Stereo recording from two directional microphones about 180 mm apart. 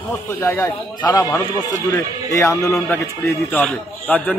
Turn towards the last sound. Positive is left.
turn(degrees=10)  # may be behind; listen again after turning